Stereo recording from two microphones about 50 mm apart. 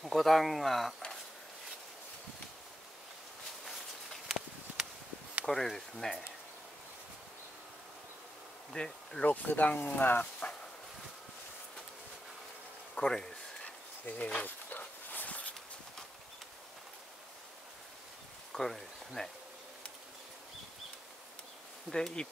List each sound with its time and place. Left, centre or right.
0.0 s speech: centre
3.6 s a sound: centre
5.4 s speech: centre
8.7 s speech: centre
9.2 s speech: left
12.9 s speech: centre
14.0 s speech: left
15.0 s a sound: left
18.5 s speech: centre
21.9 s speech: centre